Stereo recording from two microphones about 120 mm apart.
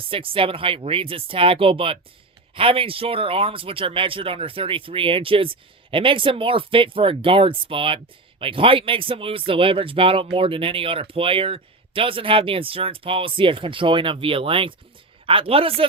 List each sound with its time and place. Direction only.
0.1 s speech: 50° right (ahead or behind)